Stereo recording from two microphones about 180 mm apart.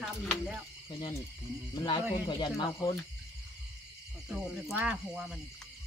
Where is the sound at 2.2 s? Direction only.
25° left (ahead or behind).